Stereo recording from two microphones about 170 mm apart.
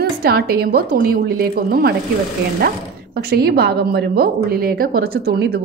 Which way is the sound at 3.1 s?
65° right (ahead or behind).